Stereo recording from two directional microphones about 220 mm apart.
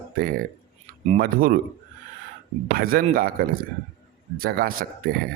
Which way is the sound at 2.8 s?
45° right (ahead or behind).